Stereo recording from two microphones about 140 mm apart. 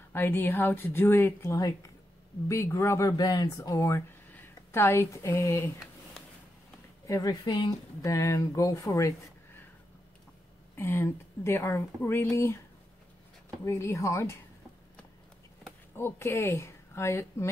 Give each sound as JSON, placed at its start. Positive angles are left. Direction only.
{"t": 0.1, "sound": "speech", "side_deg": 15}
{"t": 7.1, "sound": "speech", "side_deg": 25}
{"t": 8.0, "sound": "speech", "side_deg": 20}
{"t": 10.8, "sound": "speech", "side_deg": 15}
{"t": 13.7, "sound": "speech", "side_deg": 20}
{"t": 16.0, "sound": "speech", "side_deg": 15}